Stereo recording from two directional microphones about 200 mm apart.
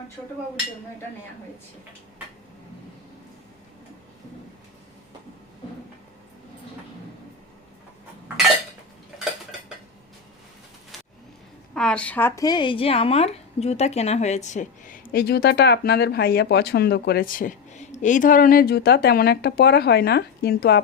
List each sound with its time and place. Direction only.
11.7 s a woman's voice: 5° left (ahead or behind); by 20.8 s 55° left (ahead or behind)